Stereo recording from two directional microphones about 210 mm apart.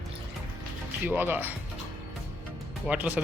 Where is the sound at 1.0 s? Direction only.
10° right (ahead or behind).